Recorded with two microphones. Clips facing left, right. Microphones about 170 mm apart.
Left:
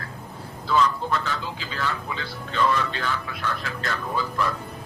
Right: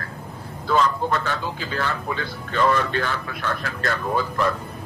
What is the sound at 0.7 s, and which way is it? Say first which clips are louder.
A man's voice: right 2 dB; 55° right (ahead or behind).